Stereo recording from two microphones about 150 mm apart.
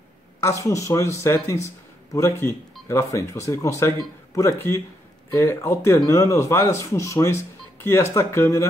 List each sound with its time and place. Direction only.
0.4 s speech: 20° left (ahead or behind)